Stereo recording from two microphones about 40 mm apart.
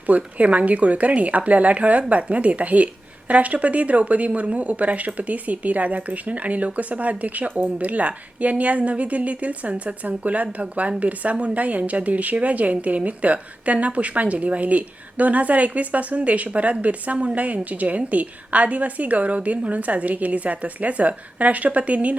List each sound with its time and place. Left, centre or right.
0.3 s a woman's voice: right